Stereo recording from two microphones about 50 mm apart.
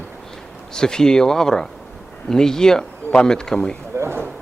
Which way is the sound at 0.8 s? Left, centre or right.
Centre.